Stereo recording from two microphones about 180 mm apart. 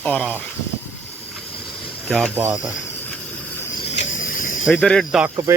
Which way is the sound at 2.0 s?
5° left (ahead or behind).